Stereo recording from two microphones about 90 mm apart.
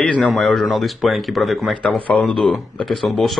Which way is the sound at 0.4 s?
5° left (ahead or behind).